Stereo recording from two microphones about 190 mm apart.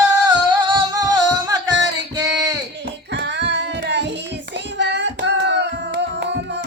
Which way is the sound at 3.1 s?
65° right (ahead or behind).